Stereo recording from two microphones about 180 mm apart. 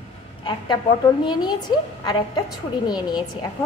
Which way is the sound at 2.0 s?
20° left (ahead or behind).